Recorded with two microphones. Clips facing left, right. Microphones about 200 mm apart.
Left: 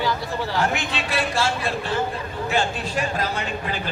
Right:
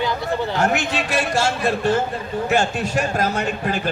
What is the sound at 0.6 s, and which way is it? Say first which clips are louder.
Speech: right 4 dB; 45° right (ahead or behind).